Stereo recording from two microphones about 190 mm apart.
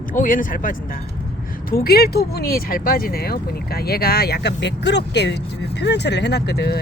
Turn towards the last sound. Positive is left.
turn(degrees=60)  # may be behind; listen again after turning